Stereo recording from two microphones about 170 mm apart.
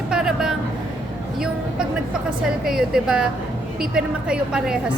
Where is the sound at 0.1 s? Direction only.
5° right (ahead or behind).